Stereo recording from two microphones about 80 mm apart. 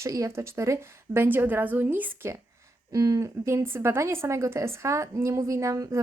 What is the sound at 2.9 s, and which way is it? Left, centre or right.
Speech, right.